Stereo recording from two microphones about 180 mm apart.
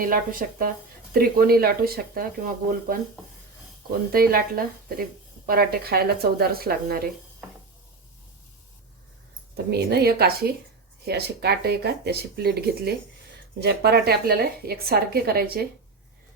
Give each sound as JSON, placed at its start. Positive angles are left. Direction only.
{"t": 0.0, "sound": "a woman's voice", "side_deg": -50}
{"t": 4.1, "sound": "a woman's voice", "side_deg": -55}
{"t": 9.6, "sound": "a woman's voice", "side_deg": -65}